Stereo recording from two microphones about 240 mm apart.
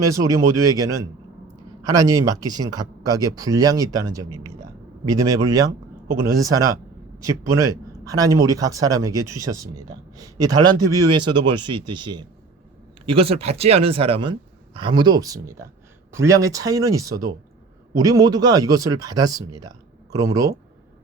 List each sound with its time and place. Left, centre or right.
0.0 s speech: centre